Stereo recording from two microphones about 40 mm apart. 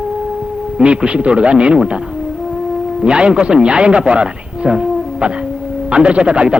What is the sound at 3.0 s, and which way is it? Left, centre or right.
A man's voice, right.